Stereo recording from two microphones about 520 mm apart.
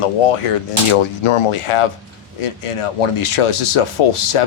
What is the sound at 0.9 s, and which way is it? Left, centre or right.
Speech, left.